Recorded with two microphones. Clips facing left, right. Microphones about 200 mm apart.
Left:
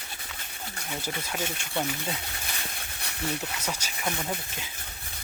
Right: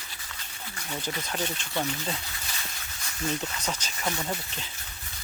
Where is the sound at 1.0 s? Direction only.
10° left (ahead or behind).